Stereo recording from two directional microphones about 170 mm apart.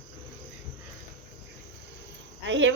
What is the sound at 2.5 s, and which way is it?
Speech, 90° right.